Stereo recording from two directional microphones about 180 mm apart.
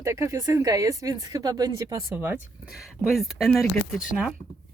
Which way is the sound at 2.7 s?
Centre (ahead or behind).